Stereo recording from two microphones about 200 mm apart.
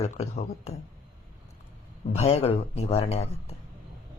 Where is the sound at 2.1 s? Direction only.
30° left (ahead or behind).